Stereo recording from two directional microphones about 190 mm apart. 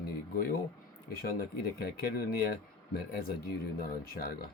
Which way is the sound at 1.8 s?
55° left (ahead or behind).